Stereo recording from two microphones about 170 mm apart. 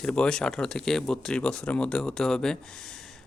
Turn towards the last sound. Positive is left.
turn(degrees=5)  # may be behind; listen again after turning